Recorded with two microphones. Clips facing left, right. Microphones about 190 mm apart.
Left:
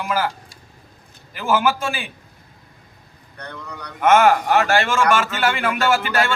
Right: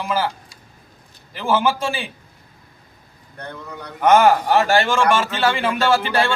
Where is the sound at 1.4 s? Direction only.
30° right (ahead or behind).